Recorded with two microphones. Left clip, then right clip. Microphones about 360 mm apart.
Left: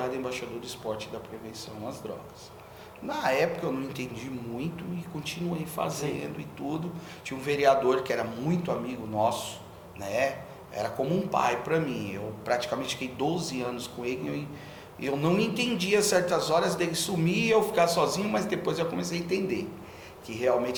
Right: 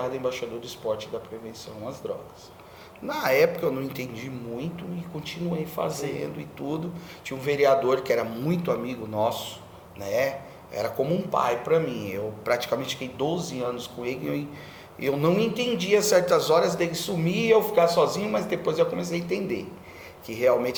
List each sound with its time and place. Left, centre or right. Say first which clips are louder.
0.0 s a man's voice: right 4 dB; right
2.0 s a man's voice: right 9 dB; right
3.1 s a man's voice: right 5 dB; right
7.3 s a man's voice: right 2 dB; right